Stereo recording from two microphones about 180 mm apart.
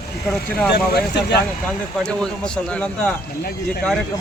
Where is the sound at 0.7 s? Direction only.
65° left (ahead or behind).